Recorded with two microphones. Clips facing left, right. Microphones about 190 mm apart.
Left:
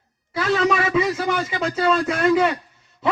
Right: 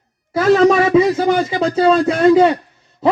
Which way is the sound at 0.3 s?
40° right (ahead or behind).